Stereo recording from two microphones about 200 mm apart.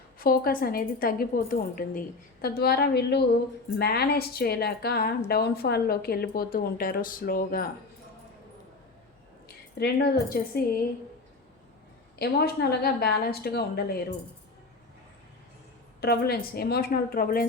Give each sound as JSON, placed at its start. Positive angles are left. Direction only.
{"t": 0.2, "sound": "a woman's voice", "side_deg": 45}
{"t": 9.7, "sound": "a woman's voice", "side_deg": 50}
{"t": 12.2, "sound": "a woman's voice", "side_deg": 50}
{"t": 16.0, "sound": "a woman's voice", "side_deg": 50}